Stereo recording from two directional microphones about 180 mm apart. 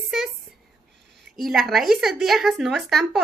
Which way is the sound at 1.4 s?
Centre (ahead or behind).